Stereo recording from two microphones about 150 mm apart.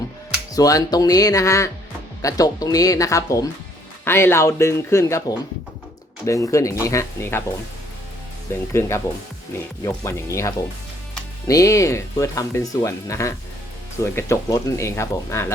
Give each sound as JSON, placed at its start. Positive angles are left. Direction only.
{"t": 0.5, "sound": "speech", "side_deg": 25}
{"t": 6.2, "sound": "speech", "side_deg": 20}
{"t": 8.8, "sound": "speech", "side_deg": 15}